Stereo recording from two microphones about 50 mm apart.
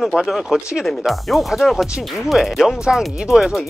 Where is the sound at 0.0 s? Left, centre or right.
Centre.